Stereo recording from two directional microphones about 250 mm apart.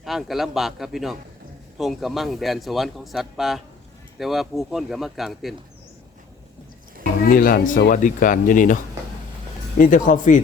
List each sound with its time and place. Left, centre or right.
0.0 s a man's voice: centre
7.3 s speech: left